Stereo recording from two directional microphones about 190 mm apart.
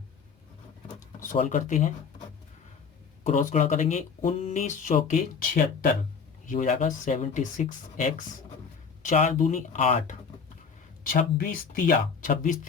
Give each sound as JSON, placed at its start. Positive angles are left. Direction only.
{"t": 0.9, "sound": "a sound", "side_deg": 45}
{"t": 1.4, "sound": "speech", "side_deg": 40}
{"t": 3.2, "sound": "speech", "side_deg": 40}
{"t": 11.0, "sound": "speech", "side_deg": 50}